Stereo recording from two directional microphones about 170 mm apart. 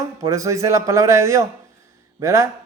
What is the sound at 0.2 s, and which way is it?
Speech, 20° right (ahead or behind).